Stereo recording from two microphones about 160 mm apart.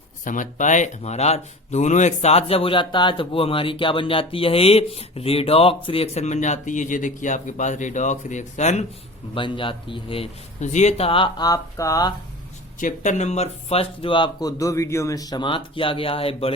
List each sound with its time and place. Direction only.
0.3 s speech: 50° left (ahead or behind)
9.3 s speech: 30° left (ahead or behind)
12.8 s speech: 50° left (ahead or behind)